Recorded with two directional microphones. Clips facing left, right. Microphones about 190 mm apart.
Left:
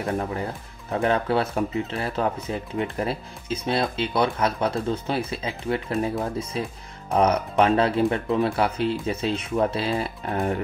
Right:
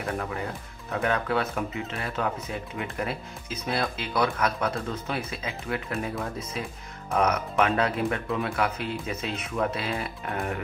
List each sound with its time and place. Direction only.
0.9 s speech: 30° left (ahead or behind)